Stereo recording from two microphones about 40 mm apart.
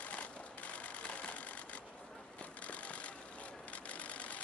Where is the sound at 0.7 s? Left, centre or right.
Left.